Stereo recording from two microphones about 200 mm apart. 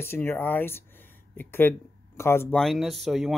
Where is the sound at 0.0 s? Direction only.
10° left (ahead or behind).